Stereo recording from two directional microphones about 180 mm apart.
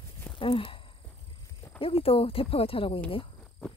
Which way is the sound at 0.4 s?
30° left (ahead or behind).